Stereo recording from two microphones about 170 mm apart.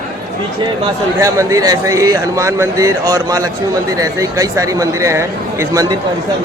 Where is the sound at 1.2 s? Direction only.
20° right (ahead or behind).